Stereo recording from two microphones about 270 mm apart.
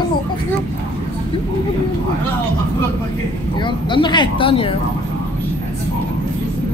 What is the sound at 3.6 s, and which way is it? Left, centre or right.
Speech, centre.